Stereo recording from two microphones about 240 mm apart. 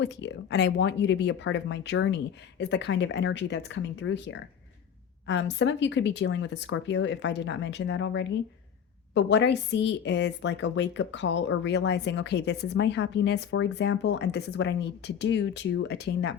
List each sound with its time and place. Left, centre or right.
0.0 s a woman's voice: left